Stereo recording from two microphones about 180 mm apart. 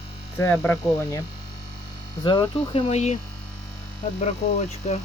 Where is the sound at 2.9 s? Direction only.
40° left (ahead or behind).